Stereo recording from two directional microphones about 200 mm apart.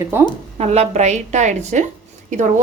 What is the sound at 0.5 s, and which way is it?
A woman's voice, 30° right (ahead or behind).